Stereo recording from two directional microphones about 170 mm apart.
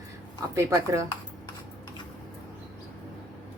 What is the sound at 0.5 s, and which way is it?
Speech, 15° right (ahead or behind).